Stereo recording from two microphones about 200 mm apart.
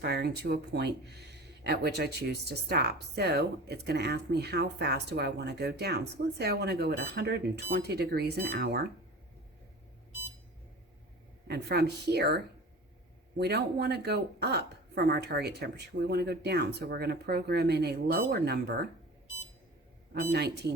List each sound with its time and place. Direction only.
0.0 s speech: 55° right (ahead or behind)
11.4 s speech: 55° right (ahead or behind)
13.4 s speech: 55° right (ahead or behind)
20.3 s speech: 55° right (ahead or behind)